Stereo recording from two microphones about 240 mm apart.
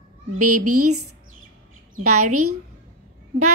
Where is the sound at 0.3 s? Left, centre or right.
Right.